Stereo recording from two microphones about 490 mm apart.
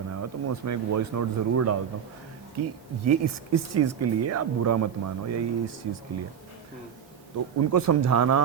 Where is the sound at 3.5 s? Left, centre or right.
Right.